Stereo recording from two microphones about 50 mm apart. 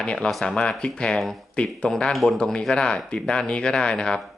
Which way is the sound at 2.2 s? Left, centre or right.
Centre.